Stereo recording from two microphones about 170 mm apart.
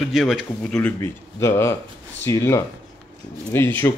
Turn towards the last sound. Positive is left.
turn(degrees=15)  # may be behind; listen again after turning